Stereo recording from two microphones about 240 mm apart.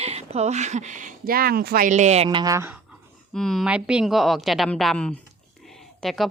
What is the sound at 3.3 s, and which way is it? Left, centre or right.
Speech, centre.